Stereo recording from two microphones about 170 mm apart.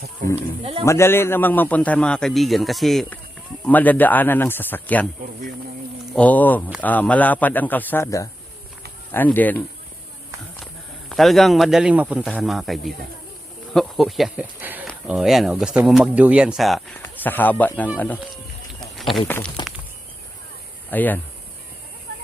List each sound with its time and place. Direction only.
0.3 s speech: 35° right (ahead or behind)
0.9 s a man's voice: 15° left (ahead or behind)
6.1 s a man's voice: 10° left (ahead or behind)
11.1 s speech: centre (ahead or behind)
17.0 s a man's voice: 10° left (ahead or behind)
18.7 s a sound: centre (ahead or behind)
19.6 s a sound: 25° left (ahead or behind)
20.9 s a man's voice: 10° left (ahead or behind)